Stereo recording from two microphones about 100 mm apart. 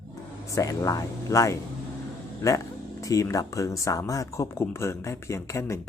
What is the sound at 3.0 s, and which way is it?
Speech, 35° left (ahead or behind).